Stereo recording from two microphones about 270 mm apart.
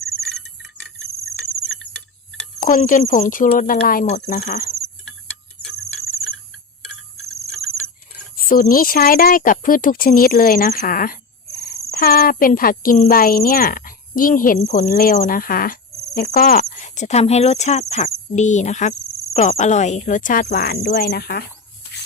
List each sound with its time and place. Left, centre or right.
1.0 s cricket: right
2.6 s speech: left
8.4 s speech: left